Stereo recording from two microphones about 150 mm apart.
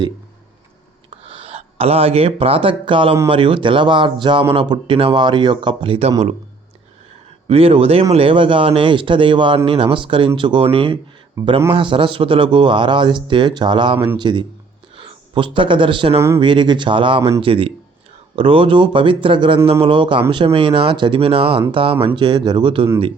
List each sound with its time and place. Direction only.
1.1 s speech: 40° right (ahead or behind)
7.4 s speech: 40° right (ahead or behind)
11.4 s speech: 15° right (ahead or behind)
11.7 s a man's voice: 35° right (ahead or behind)
16.1 s speech: 15° right (ahead or behind)
16.4 s speech: 30° right (ahead or behind)